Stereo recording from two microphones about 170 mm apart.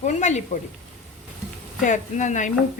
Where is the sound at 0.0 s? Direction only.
45° left (ahead or behind).